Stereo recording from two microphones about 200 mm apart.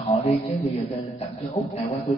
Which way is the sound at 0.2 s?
30° left (ahead or behind).